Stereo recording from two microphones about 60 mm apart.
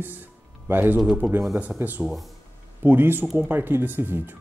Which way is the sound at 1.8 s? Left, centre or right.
Right.